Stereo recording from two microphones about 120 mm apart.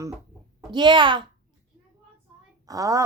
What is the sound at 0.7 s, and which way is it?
Speech, 40° right (ahead or behind).